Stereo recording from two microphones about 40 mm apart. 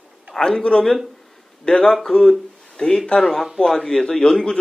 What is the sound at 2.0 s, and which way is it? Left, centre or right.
Speech, centre.